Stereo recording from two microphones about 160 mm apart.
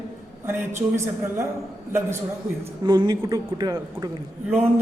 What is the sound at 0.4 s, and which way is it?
A man's voice, 15° right (ahead or behind).